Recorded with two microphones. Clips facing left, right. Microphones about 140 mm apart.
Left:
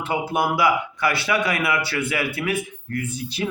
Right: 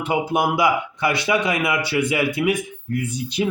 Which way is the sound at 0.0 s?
15° right (ahead or behind).